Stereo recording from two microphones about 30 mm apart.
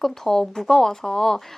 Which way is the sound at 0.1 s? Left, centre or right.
Centre.